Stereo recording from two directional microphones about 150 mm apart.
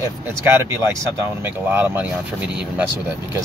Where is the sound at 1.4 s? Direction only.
15° right (ahead or behind).